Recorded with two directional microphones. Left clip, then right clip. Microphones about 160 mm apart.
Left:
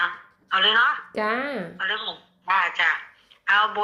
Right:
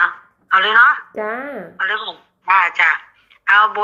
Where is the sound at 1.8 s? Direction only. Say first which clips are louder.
Right 9 dB; 5° right (ahead or behind).